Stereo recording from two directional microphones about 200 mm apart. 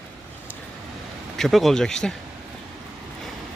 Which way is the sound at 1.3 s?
Centre (ahead or behind).